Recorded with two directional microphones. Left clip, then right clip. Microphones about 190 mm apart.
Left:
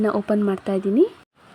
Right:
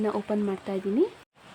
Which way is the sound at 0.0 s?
30° left (ahead or behind).